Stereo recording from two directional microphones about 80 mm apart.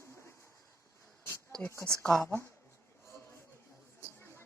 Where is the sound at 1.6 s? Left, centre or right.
Left.